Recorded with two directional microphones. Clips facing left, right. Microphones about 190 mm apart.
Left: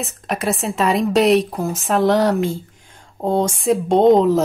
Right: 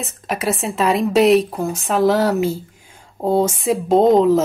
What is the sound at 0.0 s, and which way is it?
Speech, centre (ahead or behind).